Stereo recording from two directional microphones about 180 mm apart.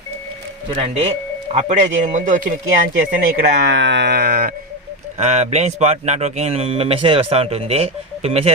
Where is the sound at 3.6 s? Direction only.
85° right; by 4.5 s 60° right (ahead or behind).